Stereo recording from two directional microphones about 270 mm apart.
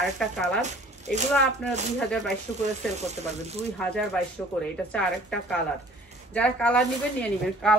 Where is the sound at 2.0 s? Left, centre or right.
Centre.